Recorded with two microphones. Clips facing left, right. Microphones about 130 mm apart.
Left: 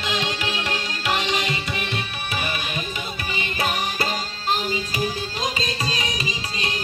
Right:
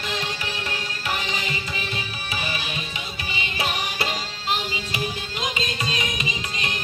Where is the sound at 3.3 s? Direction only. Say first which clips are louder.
Left 2 dB; 45° left (ahead or behind).